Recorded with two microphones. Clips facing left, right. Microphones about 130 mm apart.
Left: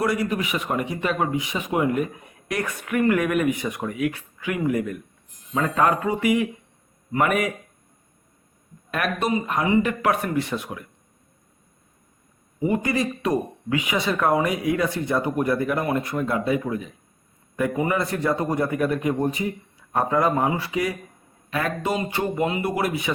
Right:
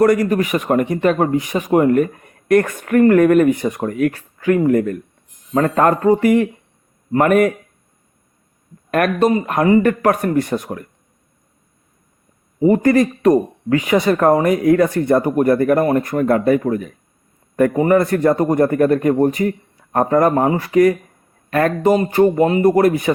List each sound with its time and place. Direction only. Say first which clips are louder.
0.0 s speech: right 10 dB; 50° right (ahead or behind)
8.9 s speech: right 9 dB; 50° right (ahead or behind)
12.5 s speech: right 10 dB; 40° right (ahead or behind)